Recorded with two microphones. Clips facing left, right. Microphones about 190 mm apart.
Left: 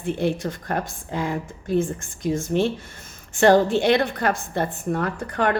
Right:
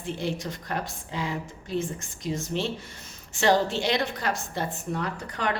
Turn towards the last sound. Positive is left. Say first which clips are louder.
# left 7 dB
turn(degrees=55)  # may be behind; listen again after turning